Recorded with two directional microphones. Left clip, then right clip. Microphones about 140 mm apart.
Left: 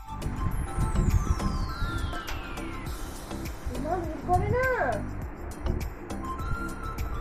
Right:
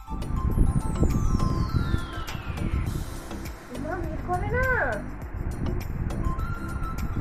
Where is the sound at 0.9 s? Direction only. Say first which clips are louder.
Right 3 dB; centre (ahead or behind).